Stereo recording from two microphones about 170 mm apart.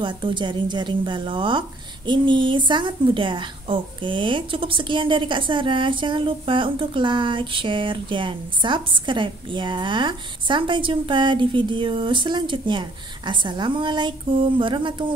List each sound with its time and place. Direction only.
0.0 s a woman's voice: 30° right (ahead or behind)